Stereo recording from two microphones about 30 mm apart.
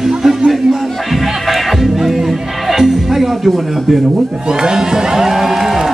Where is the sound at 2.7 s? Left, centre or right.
Centre.